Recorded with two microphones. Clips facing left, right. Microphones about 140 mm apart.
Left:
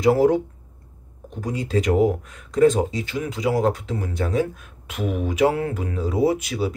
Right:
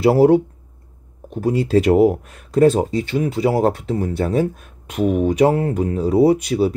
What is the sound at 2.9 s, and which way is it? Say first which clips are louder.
Speech: right 7 dB; 50° right (ahead or behind).